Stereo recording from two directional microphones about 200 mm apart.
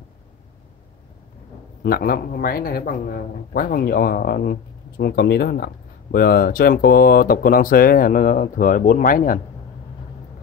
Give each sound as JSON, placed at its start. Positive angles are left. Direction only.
{"t": 1.8, "sound": "a man's voice", "side_deg": 50}